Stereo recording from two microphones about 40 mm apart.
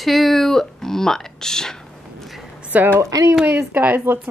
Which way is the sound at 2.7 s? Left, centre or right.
Right.